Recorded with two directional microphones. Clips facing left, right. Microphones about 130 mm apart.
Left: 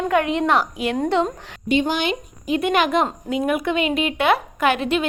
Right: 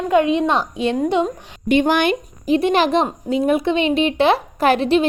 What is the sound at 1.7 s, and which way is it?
Speech, 55° right (ahead or behind).